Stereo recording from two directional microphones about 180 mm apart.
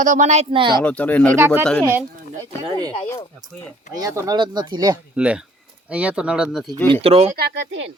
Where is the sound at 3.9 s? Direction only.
20° right (ahead or behind).